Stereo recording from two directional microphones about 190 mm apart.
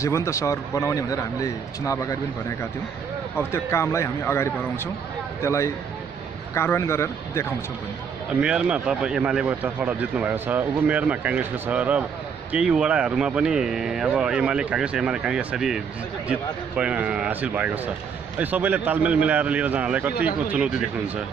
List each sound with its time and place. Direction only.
0.0 s a man's voice: 15° left (ahead or behind)
3.3 s a man's voice: 15° left (ahead or behind)
8.3 s speech: 5° right (ahead or behind)